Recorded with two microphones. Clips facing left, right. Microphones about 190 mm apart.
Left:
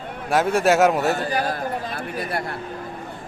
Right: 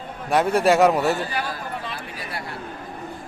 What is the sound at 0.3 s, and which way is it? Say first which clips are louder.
Speech: even; centre (ahead or behind).